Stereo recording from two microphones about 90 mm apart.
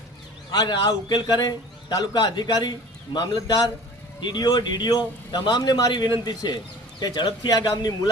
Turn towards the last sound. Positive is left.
turn(degrees=50)  # may be behind; listen again after turning